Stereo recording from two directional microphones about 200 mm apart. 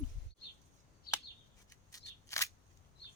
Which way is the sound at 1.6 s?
15° left (ahead or behind).